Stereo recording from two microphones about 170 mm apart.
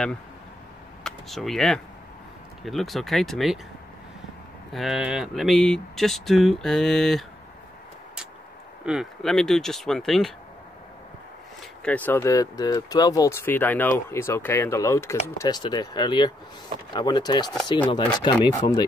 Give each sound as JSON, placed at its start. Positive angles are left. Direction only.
{"t": 1.0, "sound": "speech", "side_deg": 0}
{"t": 4.7, "sound": "speech", "side_deg": -5}
{"t": 8.8, "sound": "speech", "side_deg": 0}
{"t": 11.8, "sound": "speech", "side_deg": 10}